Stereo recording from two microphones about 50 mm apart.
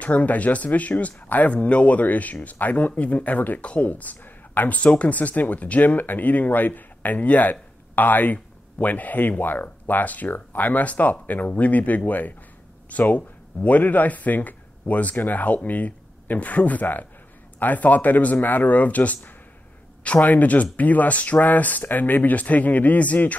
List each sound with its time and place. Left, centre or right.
0.0 s speech: left